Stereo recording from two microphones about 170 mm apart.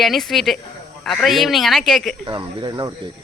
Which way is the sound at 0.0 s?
Centre (ahead or behind).